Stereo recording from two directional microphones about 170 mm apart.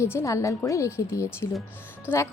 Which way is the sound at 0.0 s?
15° left (ahead or behind).